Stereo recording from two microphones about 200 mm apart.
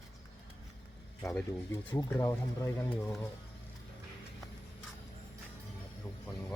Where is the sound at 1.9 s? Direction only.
20° left (ahead or behind).